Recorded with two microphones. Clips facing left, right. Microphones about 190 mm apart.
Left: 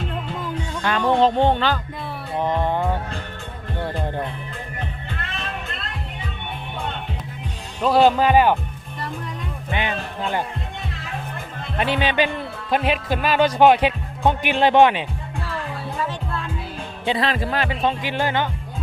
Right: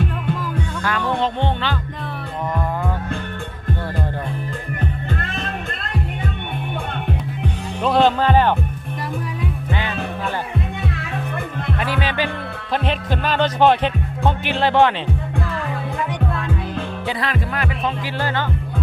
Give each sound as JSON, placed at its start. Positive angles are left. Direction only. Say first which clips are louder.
{"t": 0.8, "sound": "music", "louder": "left 4 dB", "side_deg": 25}
{"t": 1.2, "sound": "speech", "louder": "left 5 dB", "side_deg": 40}
{"t": 2.4, "sound": "music", "louder": "left 3 dB", "side_deg": 30}
{"t": 4.8, "sound": "music", "louder": "right 8 dB", "side_deg": -45}
{"t": 7.8, "sound": "music", "louder": "left 1 dB", "side_deg": 5}
{"t": 10.9, "sound": "music", "louder": "right 5 dB", "side_deg": -60}
{"t": 11.8, "sound": "speech", "louder": "left 4 dB", "side_deg": 20}
{"t": 12.7, "sound": "speech", "louder": "left 1 dB", "side_deg": 10}
{"t": 17.1, "sound": "speech", "louder": "left 5 dB", "side_deg": 25}
{"t": 18.2, "sound": "speech", "louder": "left 1 dB", "side_deg": 15}